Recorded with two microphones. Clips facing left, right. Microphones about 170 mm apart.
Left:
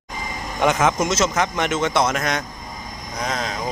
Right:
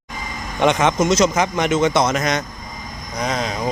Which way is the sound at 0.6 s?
5° left (ahead or behind).